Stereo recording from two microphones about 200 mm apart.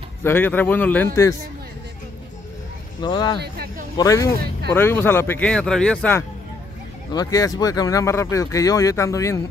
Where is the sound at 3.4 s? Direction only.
50° right (ahead or behind).